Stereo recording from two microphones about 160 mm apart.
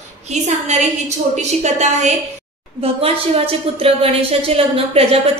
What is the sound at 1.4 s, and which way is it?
A woman's voice, 45° right (ahead or behind).